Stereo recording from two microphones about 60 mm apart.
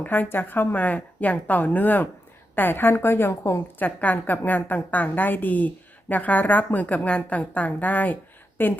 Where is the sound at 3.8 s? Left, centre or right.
Left.